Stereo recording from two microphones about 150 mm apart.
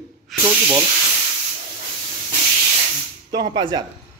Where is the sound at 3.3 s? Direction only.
30° right (ahead or behind).